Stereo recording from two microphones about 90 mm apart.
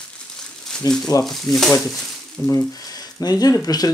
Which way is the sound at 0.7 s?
5° left (ahead or behind).